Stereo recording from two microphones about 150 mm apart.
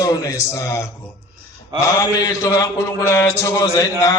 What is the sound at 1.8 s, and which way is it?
Mantra, 20° left (ahead or behind).